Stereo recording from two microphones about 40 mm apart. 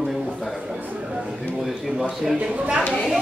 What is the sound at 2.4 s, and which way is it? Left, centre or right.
Speech, right.